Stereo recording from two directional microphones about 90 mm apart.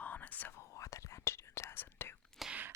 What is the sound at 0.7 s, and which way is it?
Whispering, 35° left (ahead or behind).